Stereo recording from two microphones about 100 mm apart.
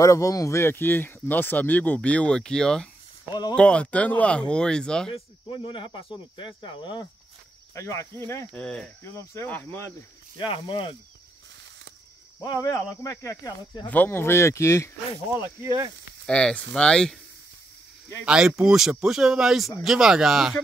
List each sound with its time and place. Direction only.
0.0 s speech: 35° left (ahead or behind); by 5.1 s 5° left (ahead or behind)
5.1 s speech: 60° left (ahead or behind)
7.7 s speech: 30° left (ahead or behind)
8.5 s speech: 10° left (ahead or behind)
9.0 s speech: 30° left (ahead or behind)
9.5 s speech: 20° left (ahead or behind)
10.3 s speech: 55° left (ahead or behind)
12.4 s speech: 35° left (ahead or behind)
13.8 s speech: 20° left (ahead or behind)
16.3 s speech: 10° left (ahead or behind)
18.2 s speech: 5° right (ahead or behind)